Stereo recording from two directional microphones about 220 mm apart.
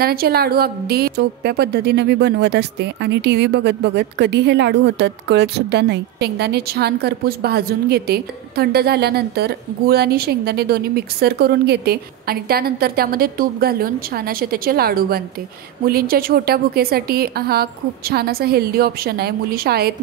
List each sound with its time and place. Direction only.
0.0 s a woman's voice: 45° right (ahead or behind)